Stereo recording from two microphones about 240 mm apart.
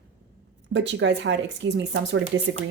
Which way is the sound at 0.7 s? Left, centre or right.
Right.